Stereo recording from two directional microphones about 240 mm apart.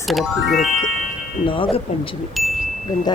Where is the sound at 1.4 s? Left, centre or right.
Left.